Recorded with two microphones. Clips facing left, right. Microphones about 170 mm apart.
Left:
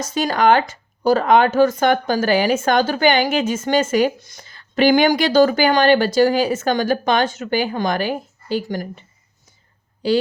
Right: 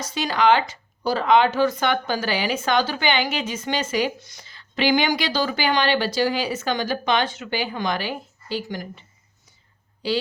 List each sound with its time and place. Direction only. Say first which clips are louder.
0.0 s speech: left 4 dB; 45° left (ahead or behind)